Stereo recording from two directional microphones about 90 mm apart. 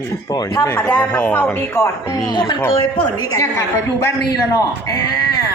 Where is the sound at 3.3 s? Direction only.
35° left (ahead or behind).